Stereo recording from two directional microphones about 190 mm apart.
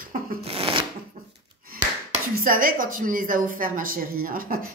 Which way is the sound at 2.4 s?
50° right (ahead or behind).